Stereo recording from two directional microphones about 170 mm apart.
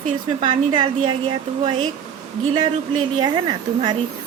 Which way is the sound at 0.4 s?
25° right (ahead or behind).